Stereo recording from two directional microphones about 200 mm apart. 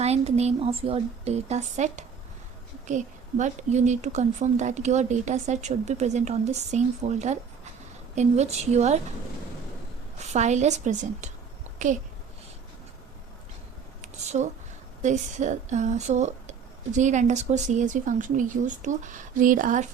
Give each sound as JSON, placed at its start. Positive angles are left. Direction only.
{"t": 0.0, "sound": "speech", "side_deg": -30}
{"t": 10.2, "sound": "speech", "side_deg": -35}
{"t": 14.0, "sound": "a sound", "side_deg": -35}
{"t": 15.0, "sound": "speech", "side_deg": -35}